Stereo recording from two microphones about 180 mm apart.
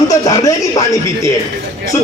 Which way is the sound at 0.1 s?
20° left (ahead or behind).